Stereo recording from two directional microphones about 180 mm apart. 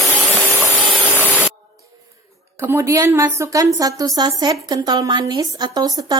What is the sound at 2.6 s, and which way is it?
A woman's voice, 15° right (ahead or behind).